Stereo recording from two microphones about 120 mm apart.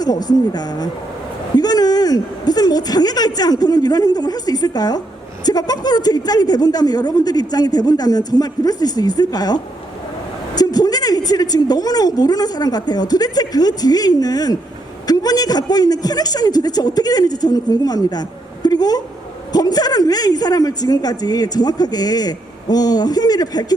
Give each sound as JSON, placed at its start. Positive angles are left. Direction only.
{"t": 0.0, "sound": "a woman's voice", "side_deg": 35}
{"t": 18.6, "sound": "a sound", "side_deg": 35}
{"t": 19.5, "sound": "a woman's voice", "side_deg": 35}